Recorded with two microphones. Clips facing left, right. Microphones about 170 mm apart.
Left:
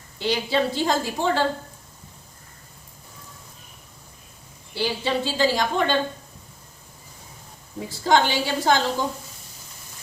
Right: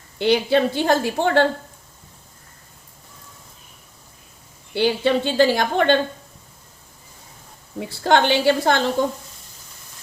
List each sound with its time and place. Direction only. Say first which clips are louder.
0.2 s a woman's voice: right 6 dB; 60° right (ahead or behind)
4.7 s a woman's voice: right 6 dB; 60° right (ahead or behind)
7.9 s a woman's voice: right 3 dB; 65° right (ahead or behind)